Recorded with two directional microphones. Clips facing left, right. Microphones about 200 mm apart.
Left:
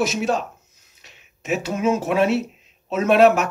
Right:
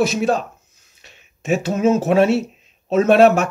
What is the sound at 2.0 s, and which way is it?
Speech, 30° right (ahead or behind).